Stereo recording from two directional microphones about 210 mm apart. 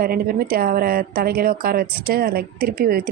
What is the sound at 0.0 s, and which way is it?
Speech, 45° right (ahead or behind).